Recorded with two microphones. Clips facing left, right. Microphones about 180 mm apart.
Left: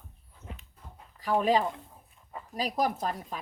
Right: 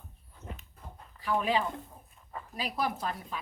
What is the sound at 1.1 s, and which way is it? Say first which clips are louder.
Speech: left 4 dB; 40° left (ahead or behind).